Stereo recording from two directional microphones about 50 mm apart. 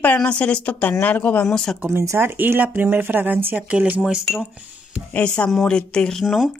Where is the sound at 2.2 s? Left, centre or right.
Right.